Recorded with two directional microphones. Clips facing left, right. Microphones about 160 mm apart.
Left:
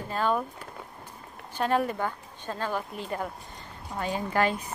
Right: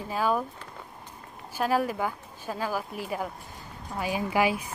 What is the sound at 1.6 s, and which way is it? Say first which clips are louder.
Speech: even; 5° right (ahead or behind).